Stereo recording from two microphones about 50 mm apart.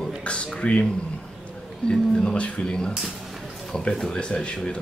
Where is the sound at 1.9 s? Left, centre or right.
Centre.